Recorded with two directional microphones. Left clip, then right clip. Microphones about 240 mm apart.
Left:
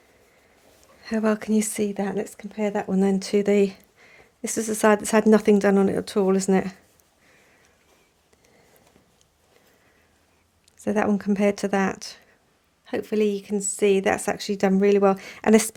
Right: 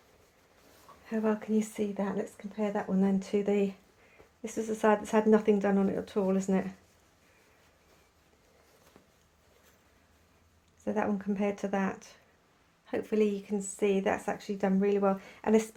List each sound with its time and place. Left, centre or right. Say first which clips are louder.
1.0 s speech: left 7 dB; left
10.8 s speech: left 8 dB; left